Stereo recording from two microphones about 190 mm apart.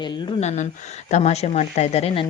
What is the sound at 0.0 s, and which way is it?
Speech, 25° left (ahead or behind).